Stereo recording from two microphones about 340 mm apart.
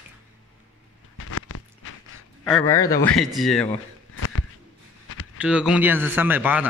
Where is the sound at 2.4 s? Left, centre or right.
Centre.